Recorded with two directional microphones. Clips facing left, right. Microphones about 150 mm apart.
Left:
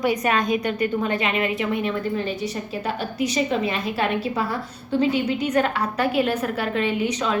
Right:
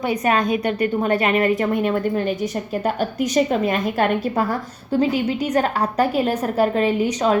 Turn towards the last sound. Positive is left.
turn(degrees=-40)  # may be behind; listen again after turning